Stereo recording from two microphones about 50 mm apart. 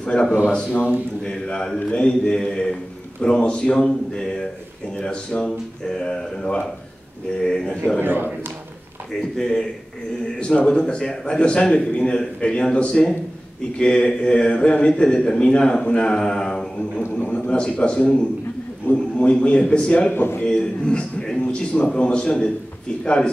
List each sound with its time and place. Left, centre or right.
0.0 s a man's voice: centre
1.8 s a man's voice: left
8.0 s speech: right
9.1 s a man's voice: centre
10.4 s a man's voice: left
20.1 s a man's voice: left
20.4 s a man's voice: centre